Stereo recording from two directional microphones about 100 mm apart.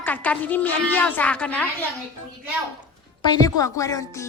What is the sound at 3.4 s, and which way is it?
Music, 35° left (ahead or behind).